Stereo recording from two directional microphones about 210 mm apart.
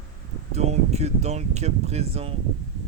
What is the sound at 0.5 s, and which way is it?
Speech, 30° right (ahead or behind).